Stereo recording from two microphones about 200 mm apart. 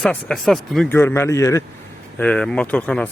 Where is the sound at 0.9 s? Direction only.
10° left (ahead or behind).